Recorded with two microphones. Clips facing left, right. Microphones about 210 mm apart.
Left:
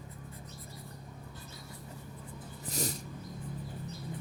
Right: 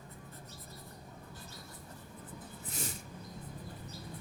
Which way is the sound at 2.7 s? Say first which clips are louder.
Left 7 dB; 40° left (ahead or behind).